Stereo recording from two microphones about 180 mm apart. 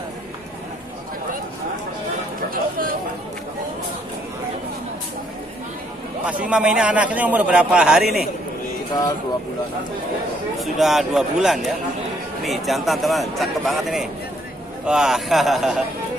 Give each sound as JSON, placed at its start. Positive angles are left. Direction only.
{"t": 2.5, "sound": "a sound", "side_deg": -50}
{"t": 6.2, "sound": "a man's voice", "side_deg": -10}
{"t": 10.6, "sound": "a man's voice", "side_deg": 0}